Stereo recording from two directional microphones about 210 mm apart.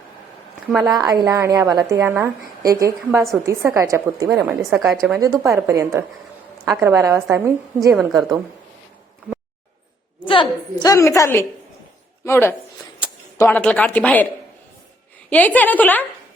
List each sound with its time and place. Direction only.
0.9 s a woman's voice: 15° right (ahead or behind)
7.9 s a woman's voice: centre (ahead or behind)
10.2 s a woman's voice: 25° left (ahead or behind); by 14.3 s 5° left (ahead or behind)
15.3 s a woman's voice: 5° left (ahead or behind)